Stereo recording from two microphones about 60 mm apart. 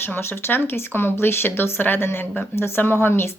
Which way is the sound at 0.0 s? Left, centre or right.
Left.